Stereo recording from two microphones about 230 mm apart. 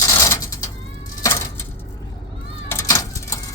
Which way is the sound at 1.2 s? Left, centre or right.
Centre.